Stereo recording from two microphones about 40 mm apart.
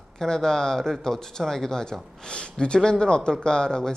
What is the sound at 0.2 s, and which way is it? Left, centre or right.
Speech, centre.